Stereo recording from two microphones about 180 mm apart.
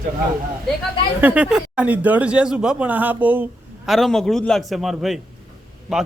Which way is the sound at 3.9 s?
Centre (ahead or behind).